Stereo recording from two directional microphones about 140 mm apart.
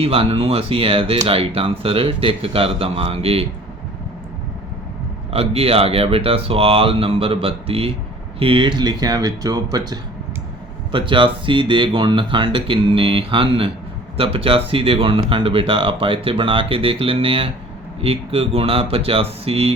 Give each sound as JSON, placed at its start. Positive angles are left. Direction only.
{"t": 0.0, "sound": "speech", "side_deg": -45}
{"t": 5.3, "sound": "speech", "side_deg": -45}